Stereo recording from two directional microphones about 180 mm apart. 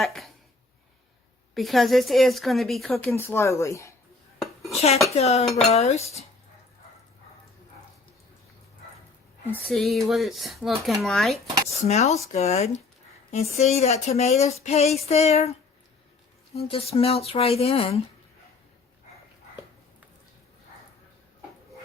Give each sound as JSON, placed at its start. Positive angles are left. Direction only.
{"t": 0.0, "sound": "speech", "side_deg": 0}
{"t": 1.5, "sound": "speech", "side_deg": 0}
{"t": 3.2, "sound": "speech", "side_deg": 15}
{"t": 4.7, "sound": "speech", "side_deg": 35}
{"t": 9.5, "sound": "speech", "side_deg": 0}
{"t": 11.7, "sound": "speech", "side_deg": 35}
{"t": 16.6, "sound": "speech", "side_deg": 35}